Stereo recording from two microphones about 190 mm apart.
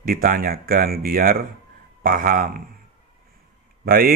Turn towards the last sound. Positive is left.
turn(degrees=-50)  # may be behind; listen again after turning